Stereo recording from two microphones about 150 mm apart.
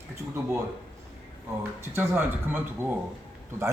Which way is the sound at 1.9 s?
15° right (ahead or behind).